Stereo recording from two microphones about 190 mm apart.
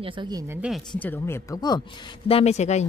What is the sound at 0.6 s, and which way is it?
Speech, centre (ahead or behind).